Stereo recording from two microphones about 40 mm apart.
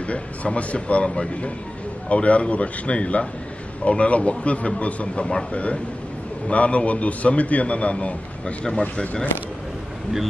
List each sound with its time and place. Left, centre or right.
0.0 s a man's voice: left